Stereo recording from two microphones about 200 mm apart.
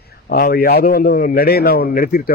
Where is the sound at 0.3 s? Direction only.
50° left (ahead or behind).